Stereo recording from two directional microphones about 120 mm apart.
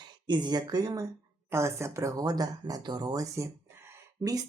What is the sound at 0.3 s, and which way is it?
Speech, 40° right (ahead or behind).